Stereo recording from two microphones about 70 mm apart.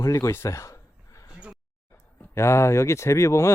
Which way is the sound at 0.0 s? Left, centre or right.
Left.